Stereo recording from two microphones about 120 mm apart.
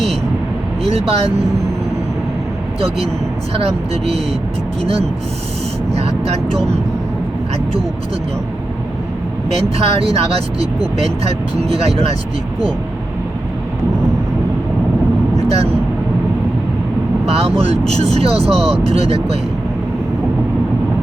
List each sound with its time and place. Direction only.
0.9 s speech: 60° right (ahead or behind)
3.5 s speech: 60° right (ahead or behind)
9.6 s speech: 60° right (ahead or behind)
11.7 s speech: 60° right (ahead or behind)
15.4 s speech: 60° right (ahead or behind)
17.2 s speech: 60° right (ahead or behind)